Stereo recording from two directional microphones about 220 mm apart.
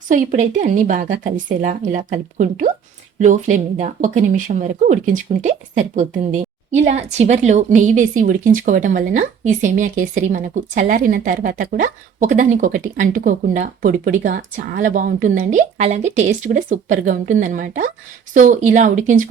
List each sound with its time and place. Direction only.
0.1 s speech: 35° right (ahead or behind)